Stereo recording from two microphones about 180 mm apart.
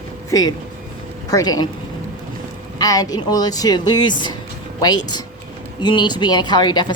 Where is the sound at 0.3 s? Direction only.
20° left (ahead or behind).